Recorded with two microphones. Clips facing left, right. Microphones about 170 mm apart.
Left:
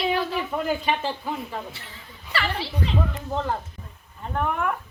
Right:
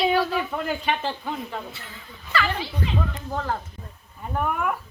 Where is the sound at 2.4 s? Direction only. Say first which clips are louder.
Right 2 dB; 30° left (ahead or behind).